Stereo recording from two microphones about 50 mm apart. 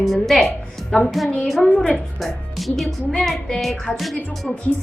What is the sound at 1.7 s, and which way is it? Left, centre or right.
Speech, left.